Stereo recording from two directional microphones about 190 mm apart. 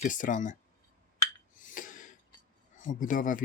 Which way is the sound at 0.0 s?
40° left (ahead or behind).